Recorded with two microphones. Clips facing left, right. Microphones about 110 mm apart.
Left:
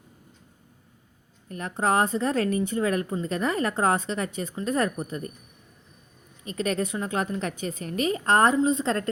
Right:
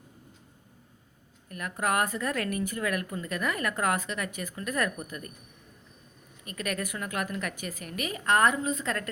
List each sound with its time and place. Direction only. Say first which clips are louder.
1.5 s a woman's voice: left 4 dB; 30° left (ahead or behind)
6.4 s a woman's voice: left 6 dB; 25° left (ahead or behind)